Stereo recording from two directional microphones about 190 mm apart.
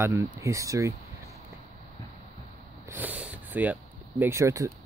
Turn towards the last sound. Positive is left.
turn(degrees=-15)  # may be behind; listen again after turning